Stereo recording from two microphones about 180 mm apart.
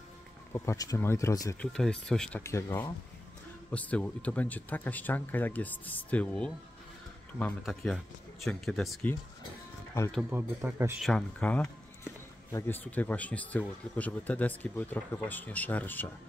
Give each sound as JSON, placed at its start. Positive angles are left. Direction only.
{"t": 0.5, "sound": "speech", "side_deg": 15}
{"t": 1.6, "sound": "speech", "side_deg": 5}
{"t": 2.4, "sound": "speech", "side_deg": 15}
{"t": 10.6, "sound": "speech", "side_deg": -15}
{"t": 11.0, "sound": "speech", "side_deg": 5}